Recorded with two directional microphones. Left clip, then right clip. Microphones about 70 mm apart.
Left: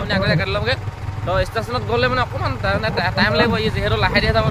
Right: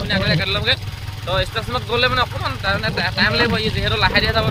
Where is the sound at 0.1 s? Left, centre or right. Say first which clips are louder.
Even; left.